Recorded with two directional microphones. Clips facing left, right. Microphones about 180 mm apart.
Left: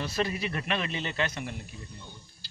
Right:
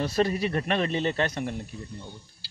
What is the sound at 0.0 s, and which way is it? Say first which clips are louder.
Speech: right 6 dB; 40° right (ahead or behind).